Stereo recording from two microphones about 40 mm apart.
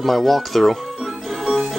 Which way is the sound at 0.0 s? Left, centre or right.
Centre.